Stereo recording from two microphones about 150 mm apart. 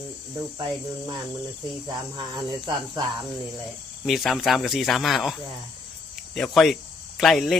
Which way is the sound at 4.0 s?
Centre (ahead or behind).